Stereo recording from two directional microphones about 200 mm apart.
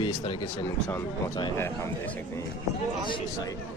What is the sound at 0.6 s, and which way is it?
A man's voice, 15° left (ahead or behind).